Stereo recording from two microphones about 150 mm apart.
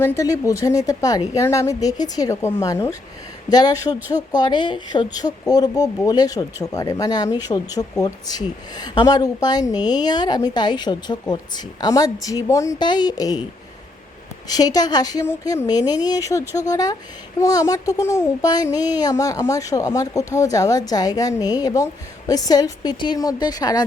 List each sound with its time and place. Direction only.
0.0 s speech: 20° left (ahead or behind)
14.4 s speech: 25° left (ahead or behind)